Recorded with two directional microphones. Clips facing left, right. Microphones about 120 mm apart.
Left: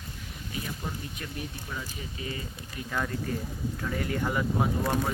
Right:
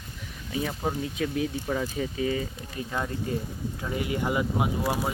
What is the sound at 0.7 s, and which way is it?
Speech, 80° right.